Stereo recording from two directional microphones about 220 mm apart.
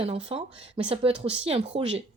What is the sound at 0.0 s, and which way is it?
A woman's voice, 25° right (ahead or behind).